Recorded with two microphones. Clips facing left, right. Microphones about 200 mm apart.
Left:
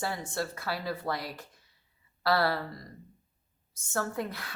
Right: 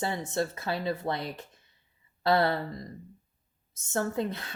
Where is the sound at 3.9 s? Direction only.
20° right (ahead or behind).